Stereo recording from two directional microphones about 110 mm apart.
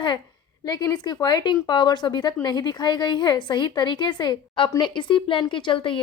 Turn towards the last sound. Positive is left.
turn(degrees=50)  # may be behind; listen again after turning